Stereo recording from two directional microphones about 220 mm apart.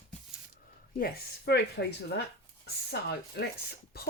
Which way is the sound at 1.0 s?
50° left (ahead or behind).